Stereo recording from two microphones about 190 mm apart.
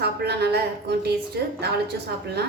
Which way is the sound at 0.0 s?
60° right (ahead or behind).